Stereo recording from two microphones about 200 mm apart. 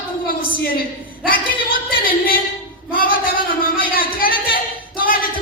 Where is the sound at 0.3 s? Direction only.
45° left (ahead or behind).